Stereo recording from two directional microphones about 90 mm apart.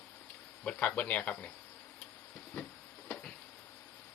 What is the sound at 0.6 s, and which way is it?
Speech, 15° left (ahead or behind).